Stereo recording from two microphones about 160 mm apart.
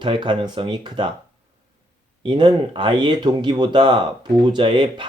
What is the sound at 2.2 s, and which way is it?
Speech, 30° right (ahead or behind).